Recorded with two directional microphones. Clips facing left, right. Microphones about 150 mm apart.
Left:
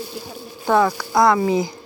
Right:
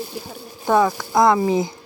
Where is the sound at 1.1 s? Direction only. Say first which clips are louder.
Even; 20° right (ahead or behind).